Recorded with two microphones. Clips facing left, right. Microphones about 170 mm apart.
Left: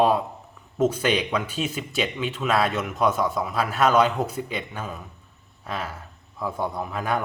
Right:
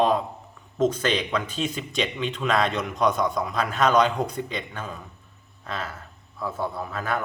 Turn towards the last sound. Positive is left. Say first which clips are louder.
# left 2 dB
turn(degrees=15)  # may be behind; listen again after turning